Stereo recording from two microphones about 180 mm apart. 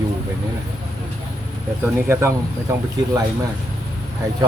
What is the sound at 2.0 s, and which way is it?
Speech, 15° right (ahead or behind).